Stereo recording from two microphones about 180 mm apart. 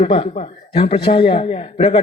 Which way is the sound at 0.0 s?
30° left (ahead or behind).